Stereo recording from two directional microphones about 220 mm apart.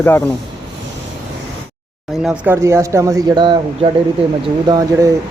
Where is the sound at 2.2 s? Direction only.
10° right (ahead or behind).